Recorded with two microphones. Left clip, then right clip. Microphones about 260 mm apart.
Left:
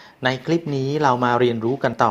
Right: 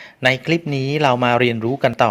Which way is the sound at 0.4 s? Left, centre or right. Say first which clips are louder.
Right 2 dB; right.